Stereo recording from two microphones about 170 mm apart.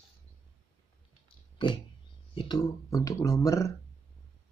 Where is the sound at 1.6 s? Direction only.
30° left (ahead or behind).